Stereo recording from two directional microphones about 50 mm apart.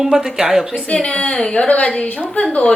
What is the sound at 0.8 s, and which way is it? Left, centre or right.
Speech, left.